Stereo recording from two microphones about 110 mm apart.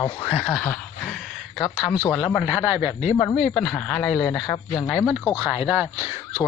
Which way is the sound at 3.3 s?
Centre (ahead or behind).